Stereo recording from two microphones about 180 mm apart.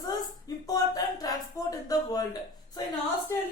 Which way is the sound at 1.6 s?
20° left (ahead or behind).